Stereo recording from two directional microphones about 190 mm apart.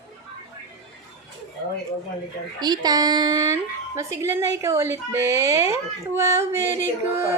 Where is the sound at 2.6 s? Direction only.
20° right (ahead or behind).